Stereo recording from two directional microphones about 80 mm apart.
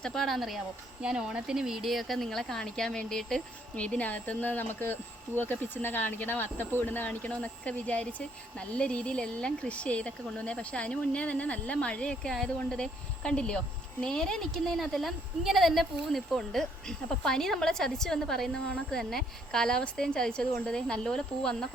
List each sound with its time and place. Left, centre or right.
0.0 s speech: centre
1.0 s speech: centre